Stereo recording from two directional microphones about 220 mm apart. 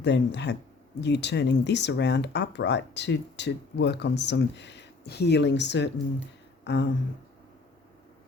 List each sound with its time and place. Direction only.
0.0 s speech: 50° left (ahead or behind)